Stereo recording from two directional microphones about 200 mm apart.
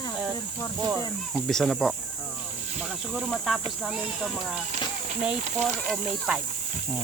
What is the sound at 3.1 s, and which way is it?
Speech, centre (ahead or behind).